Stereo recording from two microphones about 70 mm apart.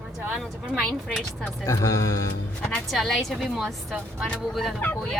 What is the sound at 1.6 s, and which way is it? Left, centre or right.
Speech, left.